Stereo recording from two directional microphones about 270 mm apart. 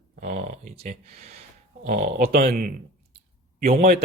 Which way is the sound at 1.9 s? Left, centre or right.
Right.